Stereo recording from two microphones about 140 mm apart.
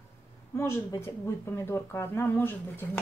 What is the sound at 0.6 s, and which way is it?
A woman's voice, 20° left (ahead or behind).